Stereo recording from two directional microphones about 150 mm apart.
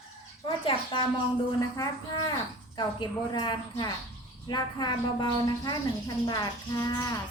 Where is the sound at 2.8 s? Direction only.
30° left (ahead or behind).